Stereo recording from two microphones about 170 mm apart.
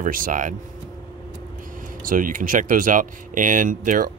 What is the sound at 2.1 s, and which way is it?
Speech, 55° right (ahead or behind).